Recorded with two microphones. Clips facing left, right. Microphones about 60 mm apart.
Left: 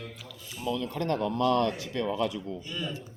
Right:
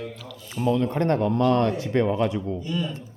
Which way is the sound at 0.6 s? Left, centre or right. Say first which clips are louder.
Right 8 dB; right.